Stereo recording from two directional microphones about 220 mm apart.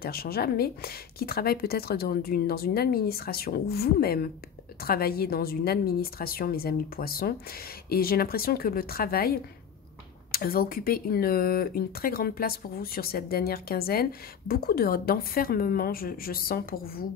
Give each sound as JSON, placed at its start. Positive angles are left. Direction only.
{"t": 0.0, "sound": "a woman's voice", "side_deg": 45}
{"t": 10.3, "sound": "a woman's voice", "side_deg": 40}